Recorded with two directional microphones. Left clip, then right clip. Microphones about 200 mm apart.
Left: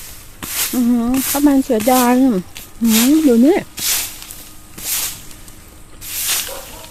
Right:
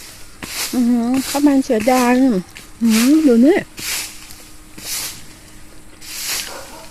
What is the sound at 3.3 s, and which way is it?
Speech, centre (ahead or behind).